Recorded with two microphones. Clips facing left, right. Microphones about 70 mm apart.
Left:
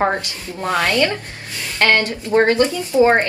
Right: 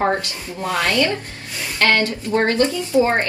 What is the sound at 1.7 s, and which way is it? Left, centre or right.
Speech, left.